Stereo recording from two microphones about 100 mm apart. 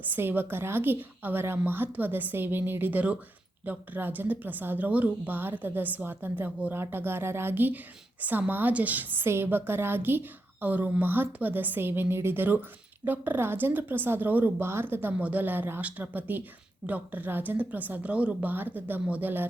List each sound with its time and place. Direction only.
0.1 s a woman's voice: 20° right (ahead or behind)